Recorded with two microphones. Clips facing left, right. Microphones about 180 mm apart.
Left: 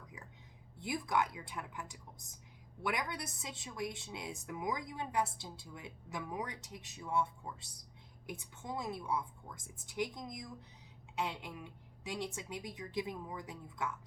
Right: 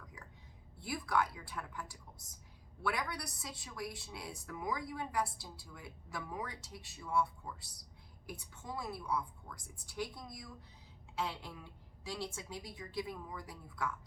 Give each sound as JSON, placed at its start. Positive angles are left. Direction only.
{"t": 0.8, "sound": "a woman's voice", "side_deg": 20}